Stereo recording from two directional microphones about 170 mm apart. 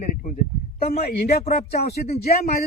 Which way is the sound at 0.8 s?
65° left (ahead or behind).